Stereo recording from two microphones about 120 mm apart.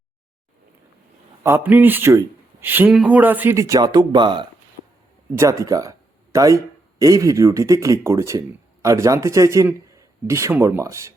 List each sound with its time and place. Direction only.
1.5 s a man's voice: 15° right (ahead or behind)
3.6 s speech: 30° right (ahead or behind)
5.4 s speech: 25° right (ahead or behind)